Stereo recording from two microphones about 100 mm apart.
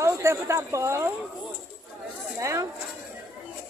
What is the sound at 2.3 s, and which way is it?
Speech, 30° right (ahead or behind).